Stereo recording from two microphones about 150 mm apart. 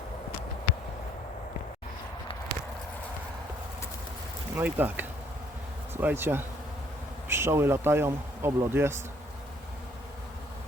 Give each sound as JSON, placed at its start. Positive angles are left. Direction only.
{"t": 4.5, "sound": "speech", "side_deg": -10}